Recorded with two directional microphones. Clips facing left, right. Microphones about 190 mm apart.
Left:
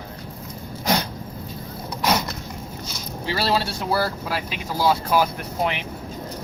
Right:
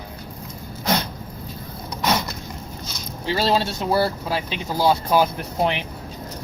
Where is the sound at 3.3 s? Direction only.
20° right (ahead or behind).